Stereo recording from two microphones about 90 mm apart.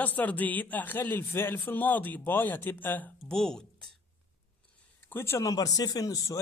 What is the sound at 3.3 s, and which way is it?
Speech, 5° left (ahead or behind).